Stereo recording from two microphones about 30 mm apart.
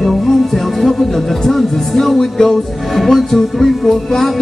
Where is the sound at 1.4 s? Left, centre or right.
Centre.